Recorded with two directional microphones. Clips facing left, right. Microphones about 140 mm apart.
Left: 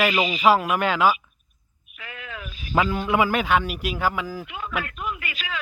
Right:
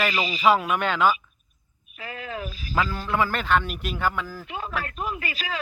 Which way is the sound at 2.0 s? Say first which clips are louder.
Right 5 dB; 35° right (ahead or behind).